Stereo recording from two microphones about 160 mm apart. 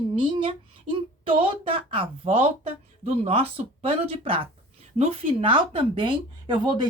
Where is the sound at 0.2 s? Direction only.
30° right (ahead or behind).